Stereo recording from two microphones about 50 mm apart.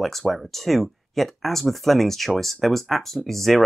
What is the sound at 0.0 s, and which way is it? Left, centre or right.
Speech, centre.